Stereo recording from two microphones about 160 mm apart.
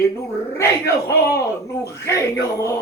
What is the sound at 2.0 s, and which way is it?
Male singing, 20° left (ahead or behind).